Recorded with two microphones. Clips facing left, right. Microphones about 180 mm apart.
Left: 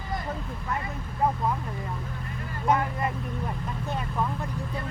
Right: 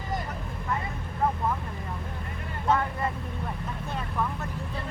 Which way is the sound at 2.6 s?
15° left (ahead or behind).